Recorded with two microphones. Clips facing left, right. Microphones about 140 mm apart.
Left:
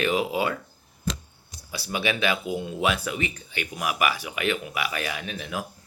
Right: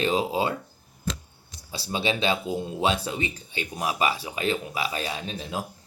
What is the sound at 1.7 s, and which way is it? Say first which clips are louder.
Speech: even; 30° right (ahead or behind).